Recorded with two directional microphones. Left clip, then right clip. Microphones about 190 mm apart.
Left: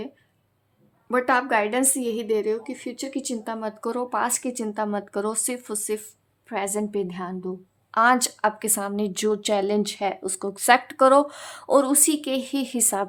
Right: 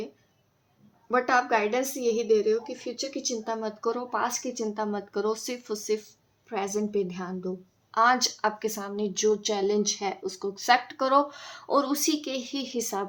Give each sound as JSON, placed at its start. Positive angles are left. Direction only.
{"t": 1.1, "sound": "a woman's voice", "side_deg": 35}